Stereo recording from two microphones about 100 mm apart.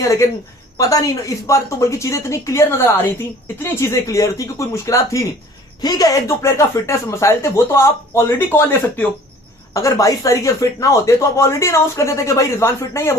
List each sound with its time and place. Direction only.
0.0 s a woman's voice: 30° left (ahead or behind)